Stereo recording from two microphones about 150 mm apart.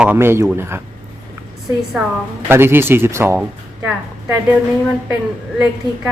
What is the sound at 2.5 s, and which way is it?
Speech, 15° right (ahead or behind).